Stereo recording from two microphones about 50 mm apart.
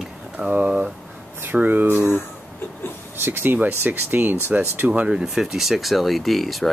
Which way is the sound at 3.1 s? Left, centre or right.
Right.